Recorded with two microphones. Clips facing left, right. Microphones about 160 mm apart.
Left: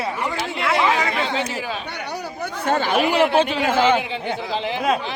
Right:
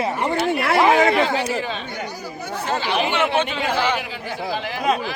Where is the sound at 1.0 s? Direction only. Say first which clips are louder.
Right 7 dB; 45° right (ahead or behind).